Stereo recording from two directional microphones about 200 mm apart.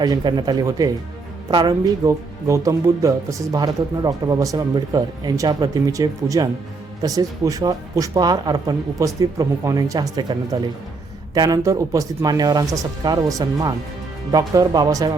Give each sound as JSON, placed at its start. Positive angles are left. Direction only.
{"t": 0.0, "sound": "speech", "side_deg": -20}